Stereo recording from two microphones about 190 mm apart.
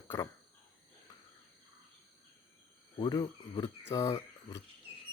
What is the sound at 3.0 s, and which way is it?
Speech, 20° left (ahead or behind).